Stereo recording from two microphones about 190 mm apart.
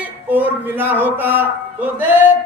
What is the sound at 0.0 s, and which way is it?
Speech, 10° right (ahead or behind).